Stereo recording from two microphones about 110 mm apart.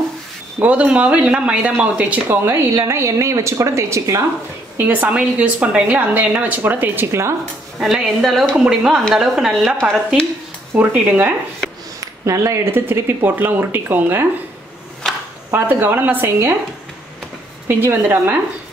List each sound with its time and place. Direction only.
0.6 s a woman's voice: 10° right (ahead or behind); by 4.3 s 25° right (ahead or behind)
4.7 s a woman's voice: 15° right (ahead or behind)
7.8 s a woman's voice: centre (ahead or behind)
10.7 s a woman's voice: 15° right (ahead or behind)
12.0 s speech: 30° right (ahead or behind)
15.5 s a woman's voice: 15° right (ahead or behind)
17.6 s speech: 20° right (ahead or behind)